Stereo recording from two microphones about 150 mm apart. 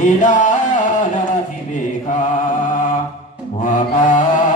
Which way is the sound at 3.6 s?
60° left (ahead or behind).